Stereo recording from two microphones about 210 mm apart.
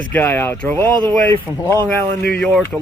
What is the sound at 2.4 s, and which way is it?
Speech, 5° left (ahead or behind).